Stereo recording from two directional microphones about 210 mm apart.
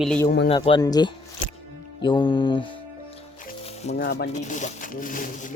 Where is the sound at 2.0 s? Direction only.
20° left (ahead or behind).